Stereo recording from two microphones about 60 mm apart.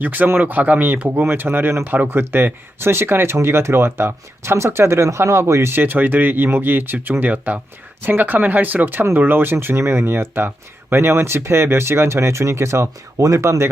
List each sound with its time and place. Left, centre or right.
0.0 s speech: right
5.7 s speech: right